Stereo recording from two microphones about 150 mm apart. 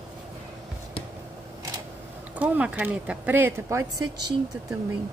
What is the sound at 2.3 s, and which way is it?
A woman's voice, 10° right (ahead or behind).